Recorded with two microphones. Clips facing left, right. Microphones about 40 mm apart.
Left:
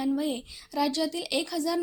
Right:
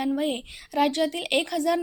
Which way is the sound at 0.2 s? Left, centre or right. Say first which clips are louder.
Right 3 dB; right.